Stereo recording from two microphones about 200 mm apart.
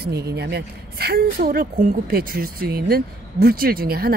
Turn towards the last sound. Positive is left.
turn(degrees=-50)  # may be behind; listen again after turning